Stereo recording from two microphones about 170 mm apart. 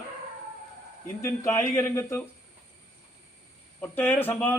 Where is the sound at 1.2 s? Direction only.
15° left (ahead or behind).